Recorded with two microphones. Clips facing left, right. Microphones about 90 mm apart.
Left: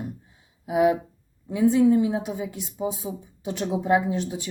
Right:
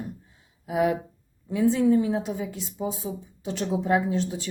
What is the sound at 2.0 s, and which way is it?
Speech, 15° left (ahead or behind).